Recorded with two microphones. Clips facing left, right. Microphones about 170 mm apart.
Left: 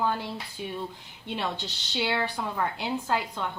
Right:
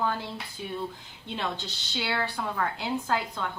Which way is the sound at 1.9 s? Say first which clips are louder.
Left 2 dB; 15° left (ahead or behind).